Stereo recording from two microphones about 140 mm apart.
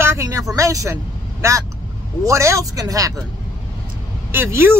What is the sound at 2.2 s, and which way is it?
Speech, 20° right (ahead or behind).